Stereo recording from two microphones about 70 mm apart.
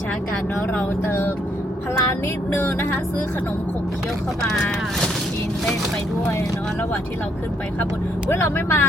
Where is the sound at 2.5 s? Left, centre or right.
Left.